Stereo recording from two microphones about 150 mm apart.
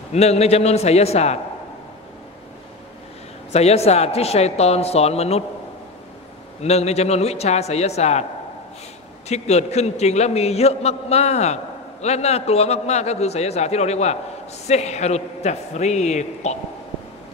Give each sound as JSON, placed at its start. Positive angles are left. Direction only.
{"t": 0.1, "sound": "a man's voice", "side_deg": 45}
{"t": 3.5, "sound": "a man's voice", "side_deg": 45}
{"t": 6.6, "sound": "a man's voice", "side_deg": 45}
{"t": 9.3, "sound": "a man's voice", "side_deg": 45}